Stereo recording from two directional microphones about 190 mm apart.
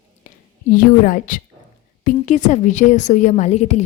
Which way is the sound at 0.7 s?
45° left (ahead or behind).